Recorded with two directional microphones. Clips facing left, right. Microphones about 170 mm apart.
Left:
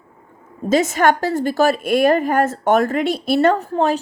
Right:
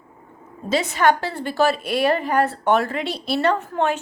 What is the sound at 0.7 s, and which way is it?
Speech, 45° left (ahead or behind).